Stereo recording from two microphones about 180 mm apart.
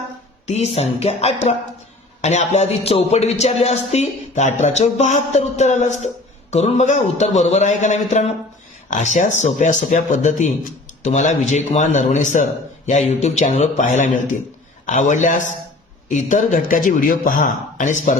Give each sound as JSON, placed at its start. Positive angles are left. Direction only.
{"t": 0.4, "sound": "speech", "side_deg": 35}